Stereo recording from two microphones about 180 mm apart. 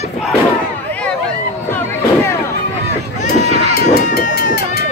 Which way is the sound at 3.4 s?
35° right (ahead or behind).